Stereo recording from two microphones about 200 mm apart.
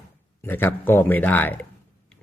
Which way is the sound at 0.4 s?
10° left (ahead or behind).